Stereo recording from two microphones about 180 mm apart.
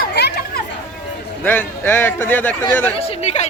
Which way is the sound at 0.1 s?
65° left (ahead or behind).